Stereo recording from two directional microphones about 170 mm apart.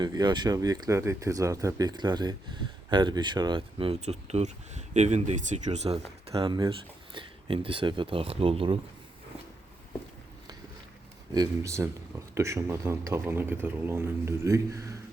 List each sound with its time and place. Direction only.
0.0 s speech: 25° right (ahead or behind)
11.3 s speech: 15° right (ahead or behind)